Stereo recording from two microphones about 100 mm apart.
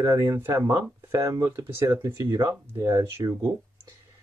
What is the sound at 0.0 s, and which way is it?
Speech, 30° right (ahead or behind).